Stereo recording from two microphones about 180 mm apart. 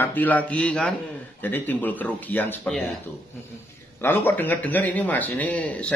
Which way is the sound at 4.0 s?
10° left (ahead or behind).